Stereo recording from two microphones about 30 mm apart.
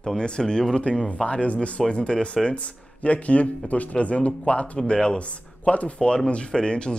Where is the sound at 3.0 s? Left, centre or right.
Left.